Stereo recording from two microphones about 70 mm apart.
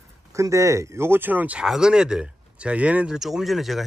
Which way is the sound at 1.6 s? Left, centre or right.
Centre.